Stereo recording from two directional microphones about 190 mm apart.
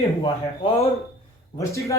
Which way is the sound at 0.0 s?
30° left (ahead or behind).